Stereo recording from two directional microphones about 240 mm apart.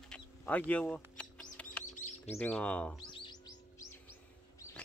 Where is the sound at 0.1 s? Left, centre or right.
Centre.